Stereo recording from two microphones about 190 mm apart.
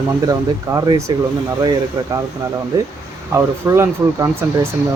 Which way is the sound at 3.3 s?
15° right (ahead or behind).